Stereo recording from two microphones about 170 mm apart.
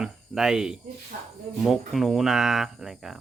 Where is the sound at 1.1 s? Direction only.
55° right (ahead or behind).